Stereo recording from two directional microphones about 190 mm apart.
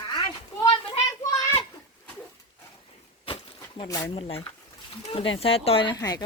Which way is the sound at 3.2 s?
30° left (ahead or behind).